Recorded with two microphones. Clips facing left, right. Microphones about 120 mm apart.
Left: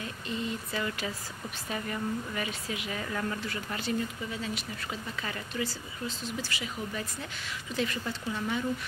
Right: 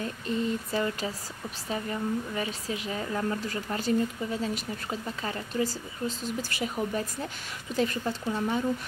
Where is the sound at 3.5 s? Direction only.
40° right (ahead or behind).